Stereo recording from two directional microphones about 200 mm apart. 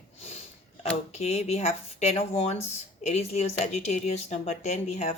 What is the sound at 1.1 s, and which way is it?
Speech, 30° left (ahead or behind).